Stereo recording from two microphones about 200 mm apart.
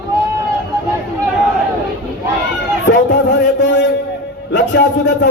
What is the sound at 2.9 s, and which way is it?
A man's voice, 60° left (ahead or behind).